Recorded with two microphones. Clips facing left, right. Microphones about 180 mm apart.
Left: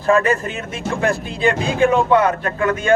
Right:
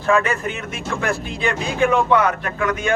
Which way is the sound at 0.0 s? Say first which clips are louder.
Left 3 dB; 35° left (ahead or behind).